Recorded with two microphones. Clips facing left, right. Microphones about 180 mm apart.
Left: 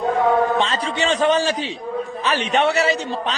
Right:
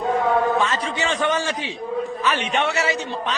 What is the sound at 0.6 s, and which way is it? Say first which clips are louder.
A man's voice: left 2 dB; 30° left (ahead or behind).